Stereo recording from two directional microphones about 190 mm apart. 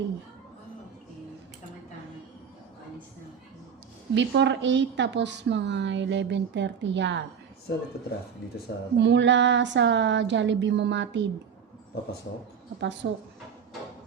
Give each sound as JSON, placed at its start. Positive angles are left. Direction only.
{"t": 4.1, "sound": "a woman's voice", "side_deg": -70}
{"t": 9.0, "sound": "a woman's voice", "side_deg": -70}
{"t": 12.8, "sound": "a woman's voice", "side_deg": -65}